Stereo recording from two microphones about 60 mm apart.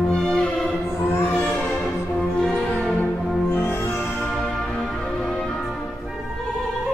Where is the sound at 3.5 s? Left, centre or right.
Left.